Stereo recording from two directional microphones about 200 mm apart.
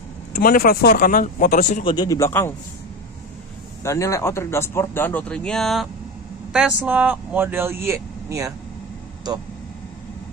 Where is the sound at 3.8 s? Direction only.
15° left (ahead or behind); by 8.5 s 15° right (ahead or behind).